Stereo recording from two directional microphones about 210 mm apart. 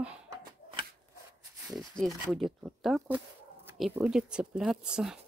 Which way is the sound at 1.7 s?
Centre (ahead or behind).